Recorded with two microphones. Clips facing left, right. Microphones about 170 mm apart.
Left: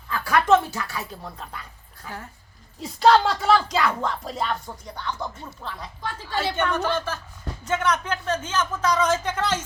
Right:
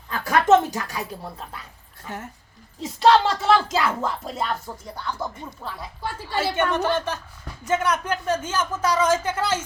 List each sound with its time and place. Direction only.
0.1 s speech: 20° right (ahead or behind)
2.0 s speech: centre (ahead or behind)